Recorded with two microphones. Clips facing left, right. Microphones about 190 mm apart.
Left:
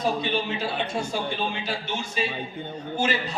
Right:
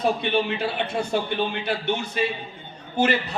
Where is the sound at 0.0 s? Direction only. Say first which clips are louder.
Right 3 dB; 60° right (ahead or behind).